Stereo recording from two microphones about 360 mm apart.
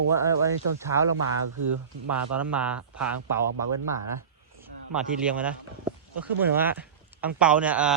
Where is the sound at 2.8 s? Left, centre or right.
Right.